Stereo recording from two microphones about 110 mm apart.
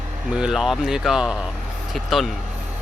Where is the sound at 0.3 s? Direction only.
5° right (ahead or behind).